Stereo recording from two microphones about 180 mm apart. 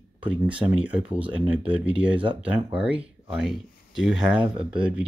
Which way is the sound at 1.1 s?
5° right (ahead or behind).